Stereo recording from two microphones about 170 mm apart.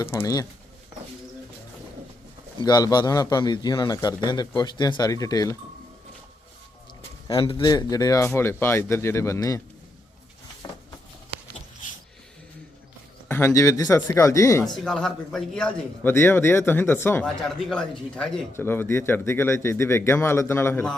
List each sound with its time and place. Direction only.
0.0 s speech: 15° left (ahead or behind)
2.6 s a man's voice: 25° left (ahead or behind)
7.3 s speech: 30° left (ahead or behind)
13.2 s speech: 15° left (ahead or behind)
14.8 s speech: centre (ahead or behind)